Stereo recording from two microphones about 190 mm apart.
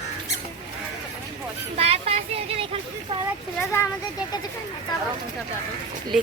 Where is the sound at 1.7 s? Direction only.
35° right (ahead or behind).